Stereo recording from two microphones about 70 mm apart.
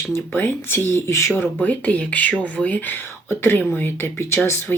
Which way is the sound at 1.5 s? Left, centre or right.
Left.